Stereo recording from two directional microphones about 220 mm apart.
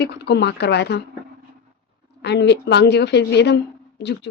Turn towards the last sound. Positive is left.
turn(degrees=50)  # may be behind; listen again after turning